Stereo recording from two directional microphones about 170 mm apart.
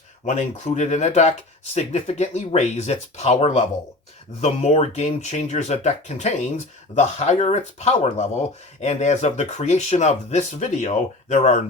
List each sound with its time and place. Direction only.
0.3 s speech: 45° left (ahead or behind)